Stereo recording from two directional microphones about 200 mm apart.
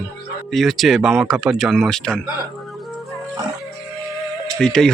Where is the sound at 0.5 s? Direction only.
Centre (ahead or behind).